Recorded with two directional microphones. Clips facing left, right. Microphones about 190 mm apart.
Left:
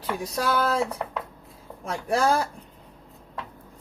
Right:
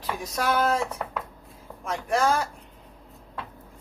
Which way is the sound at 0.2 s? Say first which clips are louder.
Right 1 dB; 35° left (ahead or behind).